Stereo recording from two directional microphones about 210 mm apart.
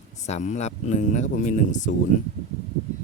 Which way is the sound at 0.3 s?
35° left (ahead or behind).